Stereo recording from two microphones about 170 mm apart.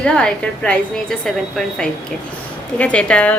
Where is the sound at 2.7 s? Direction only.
5° left (ahead or behind).